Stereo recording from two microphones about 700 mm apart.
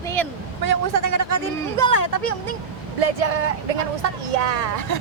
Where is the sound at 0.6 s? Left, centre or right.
Right.